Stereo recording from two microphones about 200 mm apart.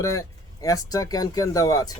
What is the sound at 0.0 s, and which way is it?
Speech, 15° left (ahead or behind).